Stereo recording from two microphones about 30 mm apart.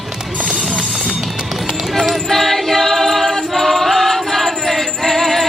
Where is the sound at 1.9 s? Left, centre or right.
Centre.